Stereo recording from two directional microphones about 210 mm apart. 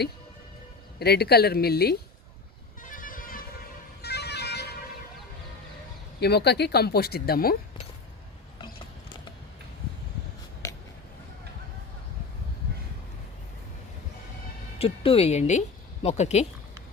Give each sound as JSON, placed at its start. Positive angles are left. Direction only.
{"t": 0.9, "sound": "speech", "side_deg": 50}
{"t": 2.8, "sound": "music", "side_deg": 40}
{"t": 6.1, "sound": "speech", "side_deg": 50}
{"t": 8.5, "sound": "a sound", "side_deg": 20}
{"t": 14.8, "sound": "speech", "side_deg": 25}